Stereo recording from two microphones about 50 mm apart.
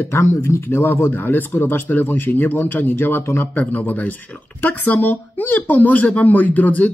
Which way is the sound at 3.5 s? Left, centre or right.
Left.